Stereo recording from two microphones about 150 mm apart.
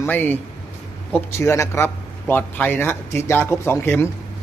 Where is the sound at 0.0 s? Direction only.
10° left (ahead or behind).